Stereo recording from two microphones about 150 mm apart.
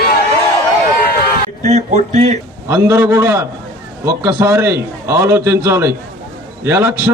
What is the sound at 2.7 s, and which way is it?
A man's voice, 15° right (ahead or behind).